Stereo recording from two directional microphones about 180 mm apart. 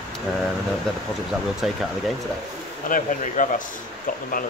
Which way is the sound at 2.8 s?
45° left (ahead or behind).